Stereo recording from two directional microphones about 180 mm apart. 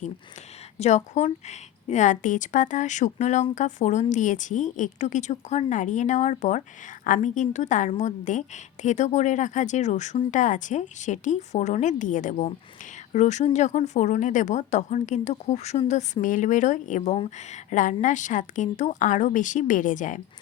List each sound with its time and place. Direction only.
0.8 s a woman's voice: 40° left (ahead or behind)